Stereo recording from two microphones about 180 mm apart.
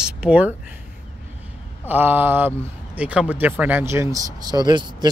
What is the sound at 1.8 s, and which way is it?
Speech, 10° right (ahead or behind).